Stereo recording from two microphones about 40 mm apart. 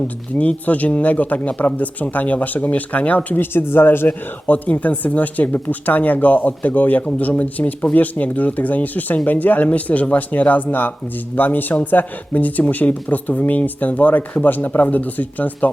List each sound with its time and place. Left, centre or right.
0.3 s speech: left
3.3 s speech: left
4.7 s speech: left